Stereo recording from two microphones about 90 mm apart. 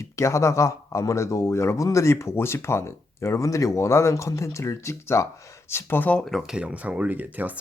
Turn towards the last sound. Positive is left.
turn(degrees=-20)  # may be behind; listen again after turning